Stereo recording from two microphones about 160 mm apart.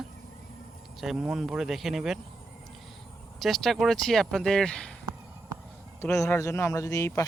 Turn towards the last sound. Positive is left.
turn(degrees=20)  # may be behind; listen again after turning